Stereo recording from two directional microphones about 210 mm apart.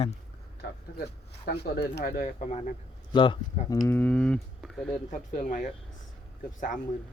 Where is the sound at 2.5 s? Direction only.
30° left (ahead or behind).